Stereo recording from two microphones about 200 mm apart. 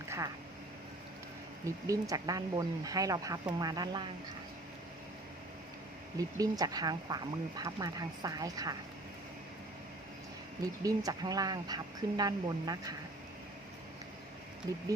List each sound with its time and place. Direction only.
1.6 s speech: 15° right (ahead or behind)
6.1 s speech: 15° right (ahead or behind)
10.8 s speech: 20° right (ahead or behind)
14.7 s speech: 20° right (ahead or behind)